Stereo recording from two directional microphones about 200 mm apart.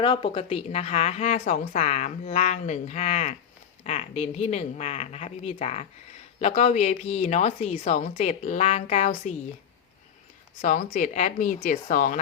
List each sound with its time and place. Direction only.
0.0 s a woman's voice: 25° left (ahead or behind)
10.6 s a woman's voice: 40° left (ahead or behind)